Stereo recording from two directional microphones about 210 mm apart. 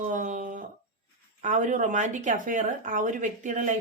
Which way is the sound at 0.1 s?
35° right (ahead or behind).